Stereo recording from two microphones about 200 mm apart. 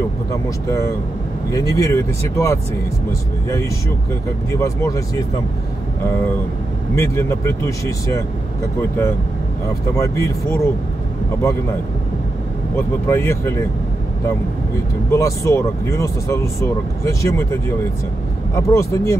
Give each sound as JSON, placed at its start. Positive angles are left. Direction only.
{"t": 0.7, "sound": "speech", "side_deg": 15}
{"t": 7.0, "sound": "speech", "side_deg": 15}
{"t": 9.9, "sound": "speech", "side_deg": 15}
{"t": 12.7, "sound": "speech", "side_deg": 10}
{"t": 15.0, "sound": "speech", "side_deg": 15}